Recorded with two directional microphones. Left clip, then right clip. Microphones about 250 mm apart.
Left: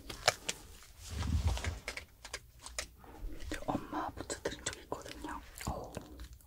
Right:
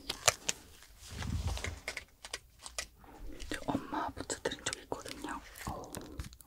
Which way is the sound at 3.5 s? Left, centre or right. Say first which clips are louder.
Right 1 dB; right.